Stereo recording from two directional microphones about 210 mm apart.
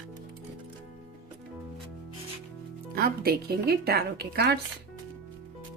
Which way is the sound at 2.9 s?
45° right (ahead or behind).